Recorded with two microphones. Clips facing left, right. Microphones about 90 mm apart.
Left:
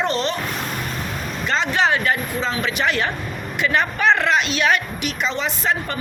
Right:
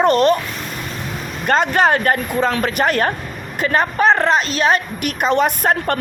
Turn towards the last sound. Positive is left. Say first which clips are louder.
# right 6 dB
turn(degrees=-55)  # may be behind; listen again after turning